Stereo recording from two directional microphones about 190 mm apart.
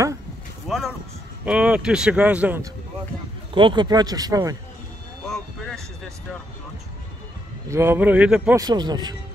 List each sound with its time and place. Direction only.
0.7 s speech: centre (ahead or behind)
3.5 s speech: 25° right (ahead or behind)
5.3 s a sound: centre (ahead or behind)
7.7 s speech: 10° right (ahead or behind)
8.5 s speech: 20° right (ahead or behind)